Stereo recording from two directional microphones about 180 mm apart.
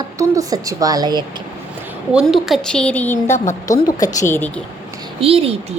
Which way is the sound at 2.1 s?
Centre (ahead or behind).